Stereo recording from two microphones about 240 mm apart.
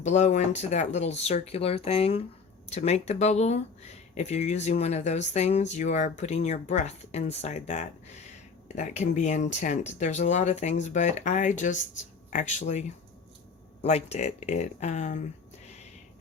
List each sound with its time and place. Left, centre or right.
0.0 s speech: left
13.8 s speech: left